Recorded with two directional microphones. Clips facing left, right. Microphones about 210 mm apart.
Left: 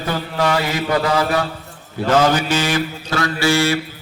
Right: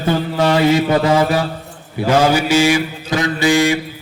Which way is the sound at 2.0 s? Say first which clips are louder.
Right 2 dB; 10° right (ahead or behind).